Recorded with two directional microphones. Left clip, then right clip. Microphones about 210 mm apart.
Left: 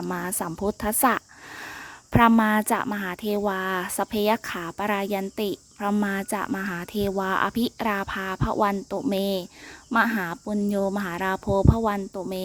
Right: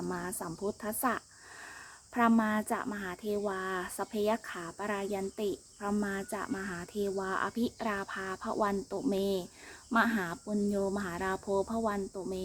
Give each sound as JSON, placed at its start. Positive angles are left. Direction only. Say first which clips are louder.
{"t": 0.0, "sound": "speech", "louder": "left 8 dB", "side_deg": 40}